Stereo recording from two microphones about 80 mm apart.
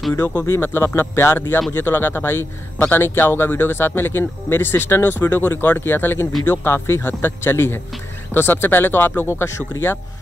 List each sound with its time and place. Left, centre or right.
0.1 s a man's voice: left